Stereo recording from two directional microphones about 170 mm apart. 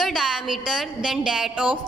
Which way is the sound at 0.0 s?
Centre (ahead or behind).